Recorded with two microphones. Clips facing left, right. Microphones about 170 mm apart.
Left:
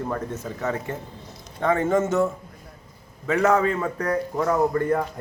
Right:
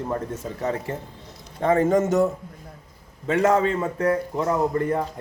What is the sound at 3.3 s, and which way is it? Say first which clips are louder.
A man's voice: even; 30° right (ahead or behind).